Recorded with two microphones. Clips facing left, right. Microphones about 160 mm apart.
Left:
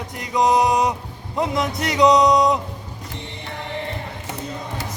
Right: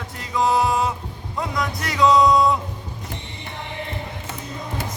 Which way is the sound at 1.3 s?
20° left (ahead or behind).